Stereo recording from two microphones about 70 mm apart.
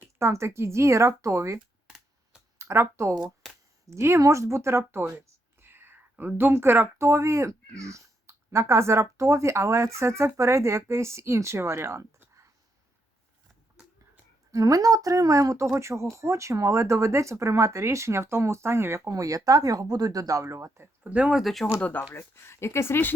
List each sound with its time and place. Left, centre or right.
0.2 s speech: right
1.5 s a sound: centre
2.6 s speech: right
3.4 s a sound: centre
3.8 s speech: right
14.5 s speech: right
21.0 s speech: centre
21.4 s speech: centre
21.8 s speech: left
22.1 s speech: left